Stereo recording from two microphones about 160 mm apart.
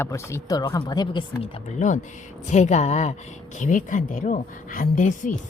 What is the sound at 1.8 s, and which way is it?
A woman's voice, 50° left (ahead or behind).